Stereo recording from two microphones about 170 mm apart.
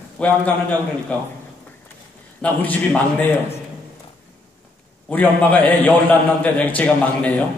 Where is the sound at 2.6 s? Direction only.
10° left (ahead or behind).